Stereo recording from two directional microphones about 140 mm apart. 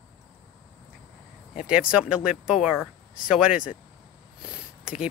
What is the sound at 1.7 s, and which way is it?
Speech, 5° right (ahead or behind).